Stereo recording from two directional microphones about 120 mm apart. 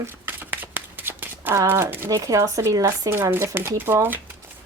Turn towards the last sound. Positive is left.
turn(degrees=-20)  # may be behind; listen again after turning